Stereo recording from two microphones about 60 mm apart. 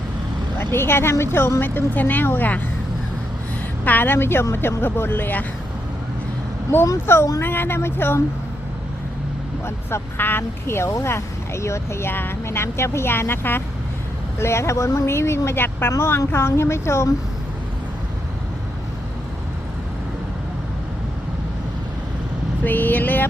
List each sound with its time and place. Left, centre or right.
0.6 s a woman's voice: left
3.8 s a woman's voice: left
6.9 s a woman's voice: left
9.6 s speech: left
12.5 s speech: left
22.6 s a woman's voice: left